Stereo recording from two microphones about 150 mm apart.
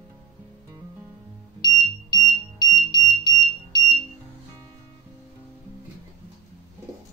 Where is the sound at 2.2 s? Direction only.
25° left (ahead or behind).